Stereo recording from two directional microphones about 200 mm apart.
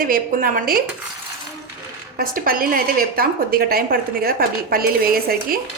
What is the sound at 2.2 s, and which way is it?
A woman's voice, 45° right (ahead or behind).